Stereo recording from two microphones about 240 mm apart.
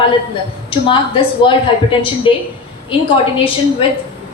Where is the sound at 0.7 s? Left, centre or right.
Left.